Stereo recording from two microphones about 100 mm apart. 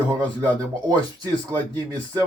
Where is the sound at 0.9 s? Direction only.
40° right (ahead or behind).